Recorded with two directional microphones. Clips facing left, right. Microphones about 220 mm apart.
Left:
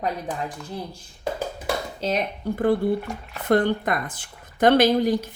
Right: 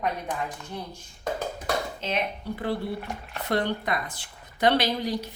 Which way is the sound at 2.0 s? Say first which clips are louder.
Left 4 dB; 40° left (ahead or behind).